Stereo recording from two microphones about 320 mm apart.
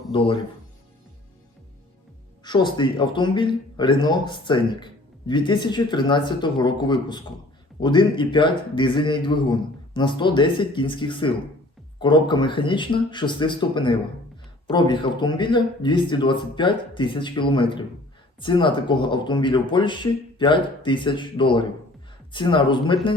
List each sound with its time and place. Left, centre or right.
0.1 s speech: centre
2.4 s speech: centre